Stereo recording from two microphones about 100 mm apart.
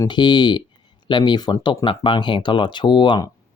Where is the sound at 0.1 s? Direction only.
50° left (ahead or behind).